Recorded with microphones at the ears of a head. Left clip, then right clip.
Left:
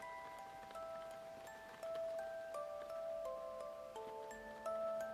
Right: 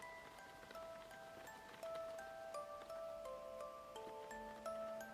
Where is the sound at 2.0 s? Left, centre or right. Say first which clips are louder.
Left 6 dB; left.